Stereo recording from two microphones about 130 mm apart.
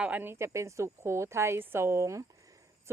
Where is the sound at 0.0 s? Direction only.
15° right (ahead or behind).